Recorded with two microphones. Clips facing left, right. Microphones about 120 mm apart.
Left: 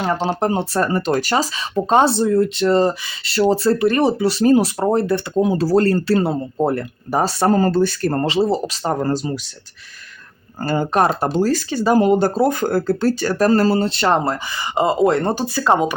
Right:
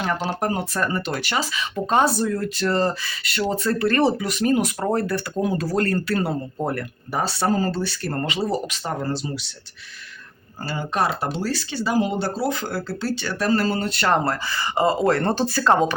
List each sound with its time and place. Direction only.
0.0 s speech: 25° left (ahead or behind)
3.5 s speech: 30° left (ahead or behind)
3.8 s speech: 15° left (ahead or behind)
4.2 s speech: 30° left (ahead or behind)
4.8 s speech: 20° left (ahead or behind)
7.2 s speech: 40° left (ahead or behind)
10.6 s speech: 50° left (ahead or behind); by 16.0 s 15° left (ahead or behind)